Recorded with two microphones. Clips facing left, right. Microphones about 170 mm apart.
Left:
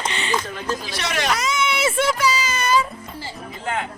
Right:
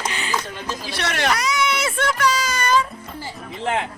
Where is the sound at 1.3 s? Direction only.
Centre (ahead or behind).